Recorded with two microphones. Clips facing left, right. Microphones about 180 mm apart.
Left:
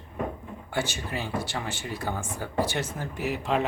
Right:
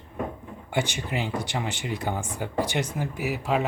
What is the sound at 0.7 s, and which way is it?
Speech, 15° right (ahead or behind).